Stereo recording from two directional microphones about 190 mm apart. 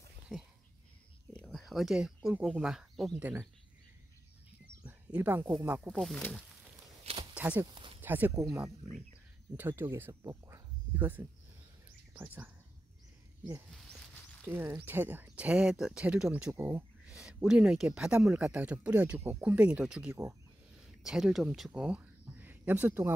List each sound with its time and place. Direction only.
1.3 s speech: 5° left (ahead or behind)
4.8 s speech: 10° right (ahead or behind)
5.9 s speech: centre (ahead or behind)
7.6 s a sound: 25° right (ahead or behind)
8.0 s speech: 10° right (ahead or behind)
12.1 s whispering: 10° right (ahead or behind)
13.7 s speech: centre (ahead or behind)
14.4 s speech: 10° right (ahead or behind)